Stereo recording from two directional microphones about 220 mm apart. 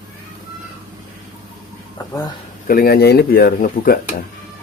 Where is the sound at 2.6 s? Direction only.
45° left (ahead or behind).